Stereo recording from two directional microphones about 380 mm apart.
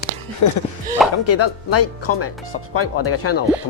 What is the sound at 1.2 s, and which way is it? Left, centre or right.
Speech, left.